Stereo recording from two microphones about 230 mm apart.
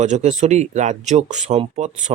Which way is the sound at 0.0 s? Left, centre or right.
Right.